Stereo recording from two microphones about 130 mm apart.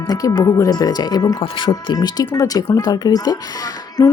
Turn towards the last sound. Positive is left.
turn(degrees=30)  # may be behind; listen again after turning